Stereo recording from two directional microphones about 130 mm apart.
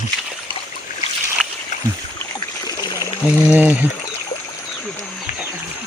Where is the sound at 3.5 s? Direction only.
15° right (ahead or behind).